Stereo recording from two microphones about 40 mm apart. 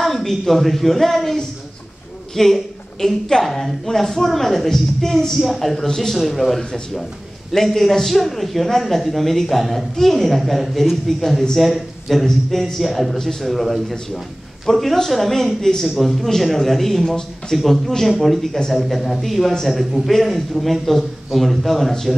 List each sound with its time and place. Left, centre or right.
0.0 s a woman's voice: centre
5.8 s a man's voice: centre